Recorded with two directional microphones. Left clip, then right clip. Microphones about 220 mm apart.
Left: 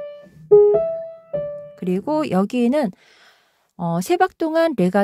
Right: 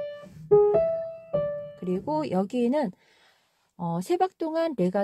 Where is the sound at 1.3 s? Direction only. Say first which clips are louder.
Left 2 dB; 25° left (ahead or behind).